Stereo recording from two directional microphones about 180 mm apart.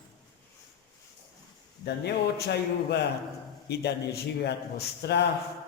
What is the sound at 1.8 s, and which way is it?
A man's voice, 65° left (ahead or behind).